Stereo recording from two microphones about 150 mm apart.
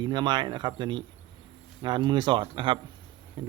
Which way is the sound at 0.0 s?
30° right (ahead or behind).